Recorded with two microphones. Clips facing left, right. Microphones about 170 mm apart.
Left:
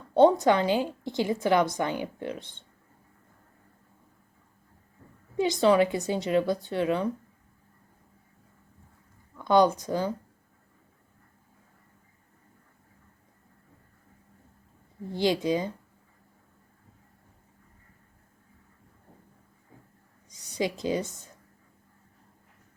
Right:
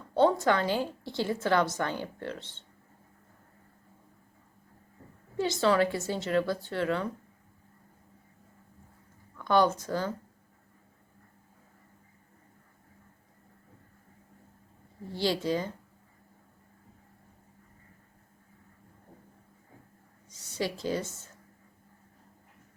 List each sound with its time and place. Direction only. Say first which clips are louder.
0.1 s a woman's voice: left 5 dB; 20° left (ahead or behind)
5.4 s a woman's voice: left 4 dB; 15° left (ahead or behind)
9.3 s speech: left 3 dB; 15° left (ahead or behind)
15.1 s a woman's voice: left 3 dB; 15° left (ahead or behind)
20.3 s a woman's voice: left 3 dB; 15° left (ahead or behind)